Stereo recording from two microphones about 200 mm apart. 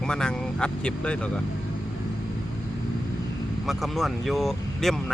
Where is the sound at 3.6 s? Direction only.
Centre (ahead or behind).